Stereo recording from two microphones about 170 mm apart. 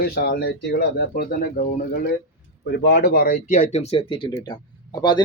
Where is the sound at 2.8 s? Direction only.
80° left.